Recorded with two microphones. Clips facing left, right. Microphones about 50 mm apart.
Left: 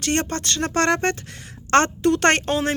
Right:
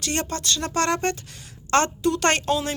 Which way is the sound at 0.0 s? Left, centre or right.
Left.